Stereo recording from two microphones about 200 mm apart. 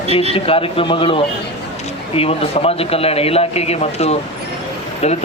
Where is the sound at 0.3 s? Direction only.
25° left (ahead or behind).